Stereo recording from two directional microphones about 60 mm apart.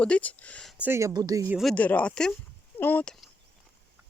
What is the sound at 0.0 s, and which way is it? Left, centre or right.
Speech, left.